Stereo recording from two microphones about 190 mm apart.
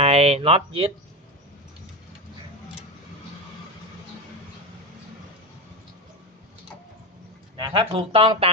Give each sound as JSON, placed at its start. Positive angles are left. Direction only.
{"t": 0.0, "sound": "speech", "side_deg": -30}
{"t": 7.5, "sound": "speech", "side_deg": -25}